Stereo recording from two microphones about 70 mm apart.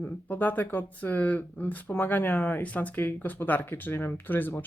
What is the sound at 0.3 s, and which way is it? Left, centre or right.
Speech, left.